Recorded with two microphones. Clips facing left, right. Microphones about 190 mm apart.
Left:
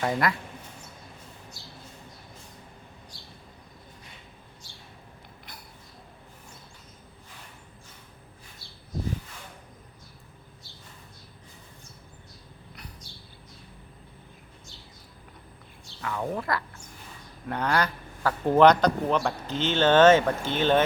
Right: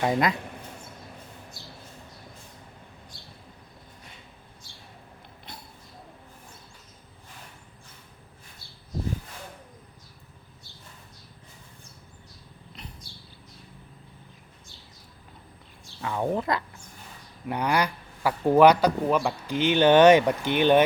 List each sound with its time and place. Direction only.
0.0 s speech: 20° right (ahead or behind)
16.0 s a sound: 25° right (ahead or behind)
17.5 s speech: 15° right (ahead or behind)